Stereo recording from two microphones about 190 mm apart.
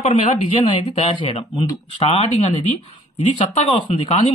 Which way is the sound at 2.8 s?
30° left (ahead or behind).